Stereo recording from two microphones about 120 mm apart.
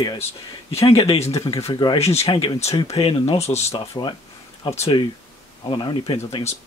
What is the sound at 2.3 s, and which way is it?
Speech, 45° left (ahead or behind).